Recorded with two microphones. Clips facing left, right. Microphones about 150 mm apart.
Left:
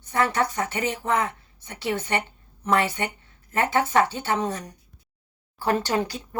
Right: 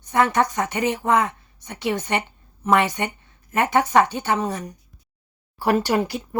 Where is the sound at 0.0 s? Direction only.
15° right (ahead or behind).